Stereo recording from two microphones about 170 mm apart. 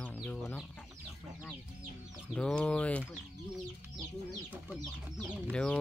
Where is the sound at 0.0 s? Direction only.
10° left (ahead or behind).